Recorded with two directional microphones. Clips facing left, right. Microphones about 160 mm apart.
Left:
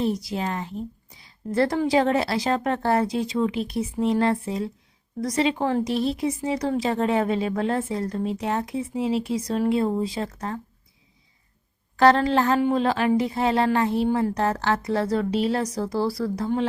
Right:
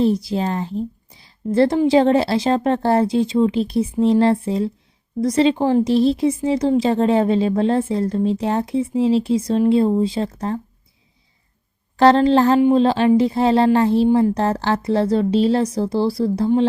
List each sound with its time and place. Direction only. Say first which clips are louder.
0.0 s speech: right 7 dB; 30° right (ahead or behind)
11.9 s speech: right 5 dB; 30° right (ahead or behind)